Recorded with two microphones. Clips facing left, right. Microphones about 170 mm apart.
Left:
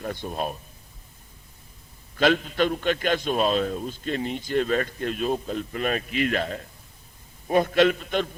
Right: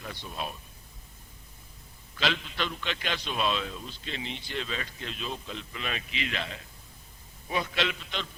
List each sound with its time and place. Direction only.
0.0 s a man's voice: 50° left (ahead or behind)
2.1 s a man's voice: 50° left (ahead or behind)